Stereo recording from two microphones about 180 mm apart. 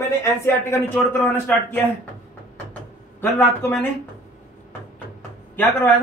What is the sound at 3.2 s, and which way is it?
Speech, 10° left (ahead or behind).